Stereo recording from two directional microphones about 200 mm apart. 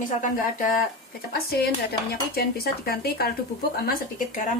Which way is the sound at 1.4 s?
50° left (ahead or behind).